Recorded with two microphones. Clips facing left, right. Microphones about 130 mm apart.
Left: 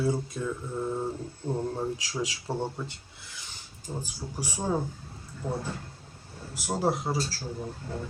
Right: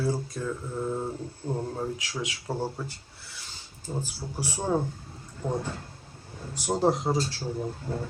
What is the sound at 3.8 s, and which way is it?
Speech, 15° left (ahead or behind).